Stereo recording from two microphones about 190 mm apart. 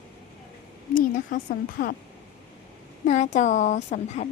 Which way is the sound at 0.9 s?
45° left (ahead or behind).